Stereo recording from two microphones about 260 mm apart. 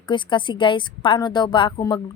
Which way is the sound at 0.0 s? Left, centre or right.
Centre.